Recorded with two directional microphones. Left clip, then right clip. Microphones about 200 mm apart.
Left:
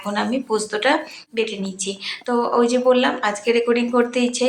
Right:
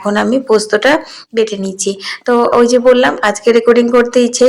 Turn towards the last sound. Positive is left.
turn(degrees=-35)  # may be behind; listen again after turning